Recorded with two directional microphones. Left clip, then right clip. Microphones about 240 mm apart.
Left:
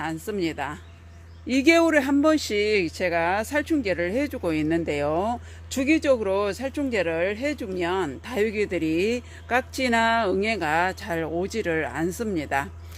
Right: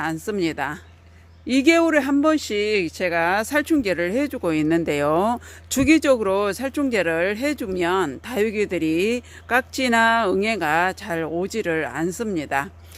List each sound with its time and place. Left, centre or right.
0.0 s speech: right